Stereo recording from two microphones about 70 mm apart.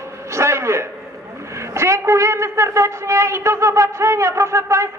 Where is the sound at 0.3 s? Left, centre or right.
Right.